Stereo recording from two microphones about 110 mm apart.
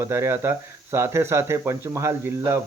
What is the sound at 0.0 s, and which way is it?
Speech, 25° right (ahead or behind).